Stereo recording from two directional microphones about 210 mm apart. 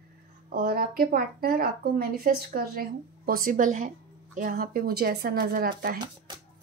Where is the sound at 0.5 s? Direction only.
45° right (ahead or behind).